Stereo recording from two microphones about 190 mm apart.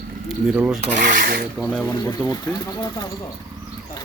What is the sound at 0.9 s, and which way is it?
Rub, 45° right (ahead or behind).